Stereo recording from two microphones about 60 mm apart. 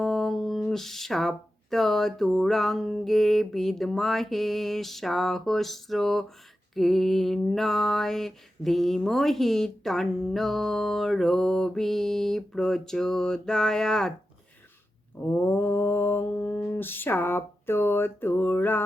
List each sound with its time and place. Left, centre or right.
0.0 s speech: centre
15.2 s mantra: left